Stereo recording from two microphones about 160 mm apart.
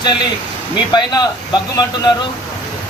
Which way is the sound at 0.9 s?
25° left (ahead or behind).